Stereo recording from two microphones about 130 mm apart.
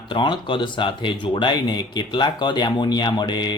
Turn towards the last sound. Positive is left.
turn(degrees=35)  # may be behind; listen again after turning